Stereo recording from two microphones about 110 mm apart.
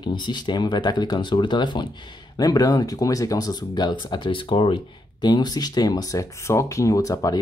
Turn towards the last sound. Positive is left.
turn(degrees=30)  # may be behind; listen again after turning